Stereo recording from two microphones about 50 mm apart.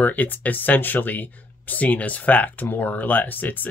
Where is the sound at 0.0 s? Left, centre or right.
Left.